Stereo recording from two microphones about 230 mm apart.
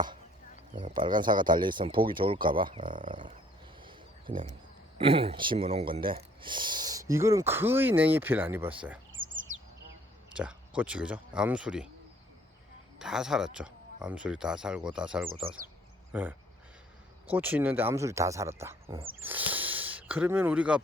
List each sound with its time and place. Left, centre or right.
0.8 s speech: right
3.8 s a sound: right
4.9 s speech: right; by 9.0 s centre
9.2 s bird: right
10.3 s speech: centre
13.0 s speech: centre